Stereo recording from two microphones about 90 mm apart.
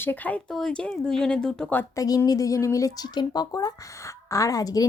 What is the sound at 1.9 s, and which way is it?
Speech, 45° left (ahead or behind).